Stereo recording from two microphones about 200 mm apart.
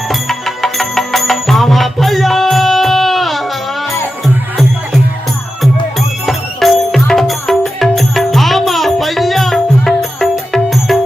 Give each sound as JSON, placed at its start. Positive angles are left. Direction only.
{"t": 0.1, "sound": "music", "side_deg": 0}
{"t": 6.2, "sound": "music", "side_deg": 0}